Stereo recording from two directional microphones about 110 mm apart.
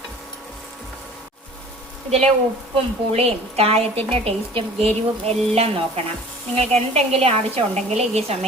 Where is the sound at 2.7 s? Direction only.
65° right (ahead or behind).